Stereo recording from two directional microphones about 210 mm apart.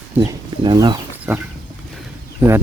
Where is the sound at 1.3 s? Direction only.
10° right (ahead or behind).